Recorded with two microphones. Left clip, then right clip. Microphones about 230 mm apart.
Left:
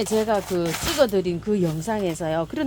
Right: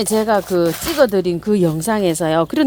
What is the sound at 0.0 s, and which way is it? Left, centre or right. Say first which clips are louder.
A woman's voice: right 6 dB; right.